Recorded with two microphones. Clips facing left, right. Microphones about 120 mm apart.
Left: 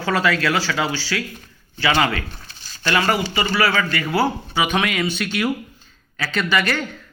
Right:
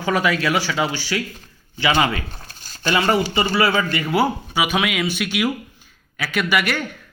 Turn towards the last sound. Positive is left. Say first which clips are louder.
# even
turn(degrees=-10)  # may be behind; listen again after turning